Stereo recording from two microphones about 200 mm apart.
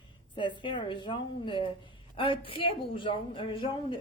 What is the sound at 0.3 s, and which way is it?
A woman's voice, 25° left (ahead or behind).